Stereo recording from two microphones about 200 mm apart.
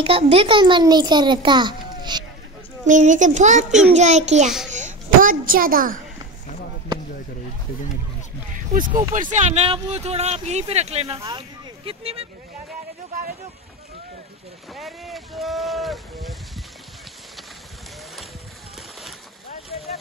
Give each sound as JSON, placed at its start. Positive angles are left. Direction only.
{"t": 0.0, "sound": "a child's voice", "side_deg": -30}
{"t": 2.8, "sound": "speech", "side_deg": -40}
{"t": 4.7, "sound": "a sound", "side_deg": -40}
{"t": 8.5, "sound": "speech", "side_deg": -40}
{"t": 11.1, "sound": "speech", "side_deg": -20}
{"t": 14.7, "sound": "a sound", "side_deg": 0}